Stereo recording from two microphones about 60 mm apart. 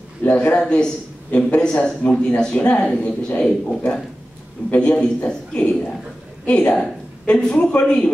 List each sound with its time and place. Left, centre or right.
0.2 s a man's voice: left